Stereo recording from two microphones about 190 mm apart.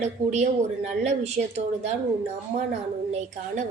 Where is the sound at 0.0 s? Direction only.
35° right (ahead or behind).